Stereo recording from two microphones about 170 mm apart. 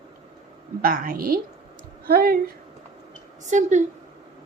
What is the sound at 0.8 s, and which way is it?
A woman's voice, 55° right (ahead or behind).